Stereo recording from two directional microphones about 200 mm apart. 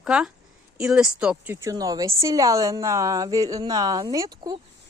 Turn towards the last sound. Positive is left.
turn(degrees=-15)  # may be behind; listen again after turning